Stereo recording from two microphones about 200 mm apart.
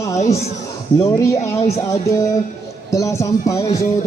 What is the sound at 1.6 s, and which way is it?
Music, 30° left (ahead or behind).